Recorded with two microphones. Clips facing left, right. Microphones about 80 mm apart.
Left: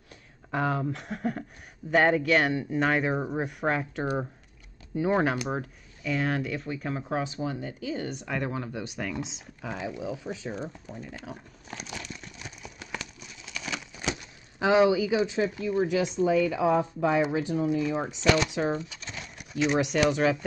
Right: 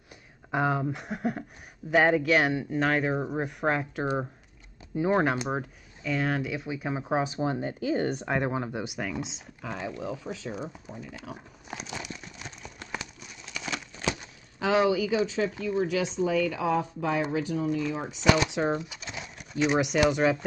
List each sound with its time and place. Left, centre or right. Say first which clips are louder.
0.5 s speech: right 1 dB; centre; by 8.3 s right
8.3 s speech: right 3 dB; right
8.8 s speech: even; centre
10.9 s speech: even; centre
11.7 s crumpling: right 2 dB; centre
12.4 s clip-clop: even; centre
13.2 s a sound: right 1 dB; centre
14.6 s speech: left 2 dB; centre
16.3 s speech: left 4 dB; left
17.6 s speech: left 2 dB; centre
18.2 s speech: right 1 dB; centre